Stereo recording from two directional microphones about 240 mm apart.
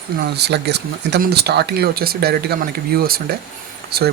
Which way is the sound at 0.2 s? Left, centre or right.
Right.